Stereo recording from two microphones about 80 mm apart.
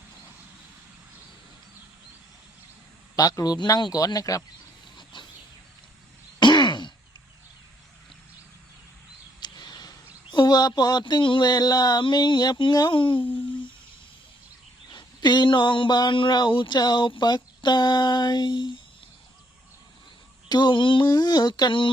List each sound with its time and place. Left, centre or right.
3.2 s a man's voice: left
5.1 s a sound: left
6.4 s sigh: left
9.4 s a sound: left
10.3 s speech: left
12.0 s speech: left
12.9 s speech: left
14.9 s speech: left
20.5 s speech: left
21.1 s speech: left